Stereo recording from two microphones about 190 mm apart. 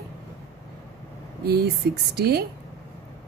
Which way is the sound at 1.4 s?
55° right (ahead or behind).